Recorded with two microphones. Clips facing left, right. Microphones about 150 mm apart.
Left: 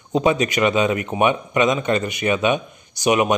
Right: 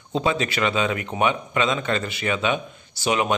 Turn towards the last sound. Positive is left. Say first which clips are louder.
# left 5 dB
turn(degrees=15)  # may be behind; listen again after turning